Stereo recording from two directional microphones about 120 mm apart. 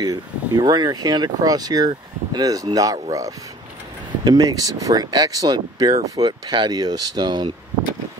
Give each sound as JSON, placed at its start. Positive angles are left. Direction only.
{"t": 0.0, "sound": "speech", "side_deg": -30}